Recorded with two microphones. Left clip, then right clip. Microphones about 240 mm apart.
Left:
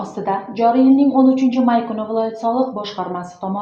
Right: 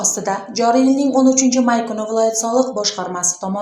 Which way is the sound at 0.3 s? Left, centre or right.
Right.